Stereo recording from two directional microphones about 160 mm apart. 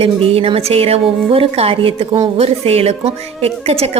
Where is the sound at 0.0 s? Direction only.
35° right (ahead or behind).